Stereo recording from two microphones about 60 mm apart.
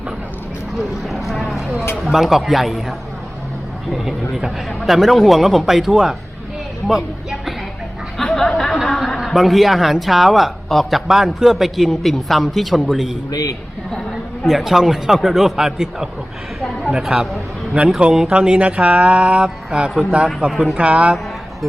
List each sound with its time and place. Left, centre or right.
0.8 s a sound: centre
2.0 s speech: centre
8.2 s chatter: centre
8.5 s a sound: centre
9.0 s speech: centre
13.3 s speech: left
14.1 s a man's voice: centre; by 21.2 s right